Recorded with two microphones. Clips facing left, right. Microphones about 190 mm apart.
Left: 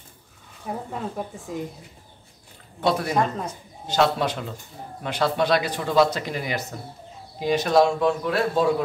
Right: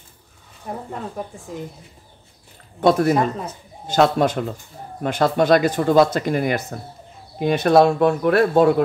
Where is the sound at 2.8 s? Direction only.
50° right (ahead or behind).